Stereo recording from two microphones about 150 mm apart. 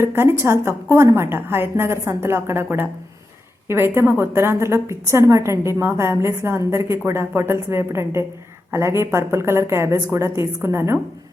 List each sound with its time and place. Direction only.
0.0 s a woman's voice: 15° right (ahead or behind)